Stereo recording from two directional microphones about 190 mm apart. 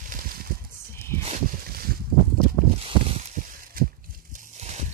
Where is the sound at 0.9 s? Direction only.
15° left (ahead or behind).